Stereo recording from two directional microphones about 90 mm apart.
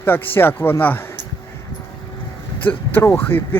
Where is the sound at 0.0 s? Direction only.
25° left (ahead or behind).